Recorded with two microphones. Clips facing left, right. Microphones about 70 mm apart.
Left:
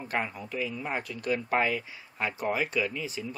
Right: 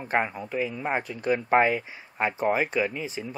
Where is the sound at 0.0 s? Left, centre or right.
Right.